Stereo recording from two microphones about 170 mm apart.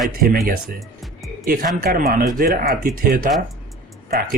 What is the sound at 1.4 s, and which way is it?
Speech, 55° right (ahead or behind).